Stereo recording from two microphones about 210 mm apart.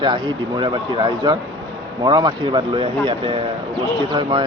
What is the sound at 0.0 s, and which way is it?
Speech, 20° right (ahead or behind).